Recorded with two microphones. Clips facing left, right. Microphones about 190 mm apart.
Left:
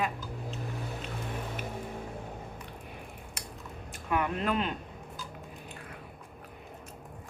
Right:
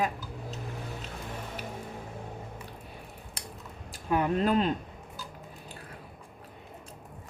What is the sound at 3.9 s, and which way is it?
Speech, 35° right (ahead or behind).